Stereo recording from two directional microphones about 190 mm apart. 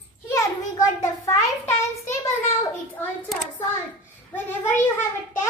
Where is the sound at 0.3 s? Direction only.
15° left (ahead or behind).